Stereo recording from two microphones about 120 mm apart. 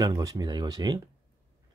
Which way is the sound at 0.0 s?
30° right (ahead or behind).